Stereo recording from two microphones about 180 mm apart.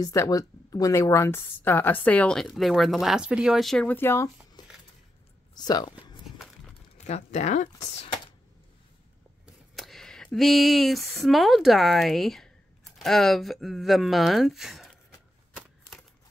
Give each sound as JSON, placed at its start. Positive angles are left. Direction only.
{"t": 0.0, "sound": "speech", "side_deg": 20}
{"t": 4.6, "sound": "a sound", "side_deg": 25}
{"t": 5.5, "sound": "speech", "side_deg": 20}
{"t": 6.2, "sound": "walk", "side_deg": 0}
{"t": 7.1, "sound": "speech", "side_deg": 40}
{"t": 9.8, "sound": "speech", "side_deg": 0}